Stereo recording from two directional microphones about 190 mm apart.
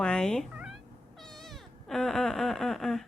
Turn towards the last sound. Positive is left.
turn(degrees=0)  # may be behind; listen again after turning